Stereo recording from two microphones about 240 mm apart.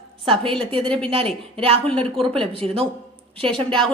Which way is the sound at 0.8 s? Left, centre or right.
Centre.